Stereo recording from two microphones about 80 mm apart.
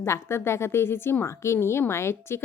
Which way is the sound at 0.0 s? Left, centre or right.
Left.